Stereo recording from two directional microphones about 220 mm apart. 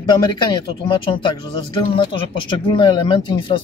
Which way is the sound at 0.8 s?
20° left (ahead or behind).